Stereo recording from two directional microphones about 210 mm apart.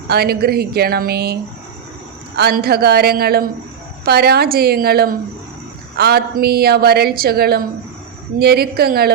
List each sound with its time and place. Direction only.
0.1 s a woman's voice: 45° right (ahead or behind)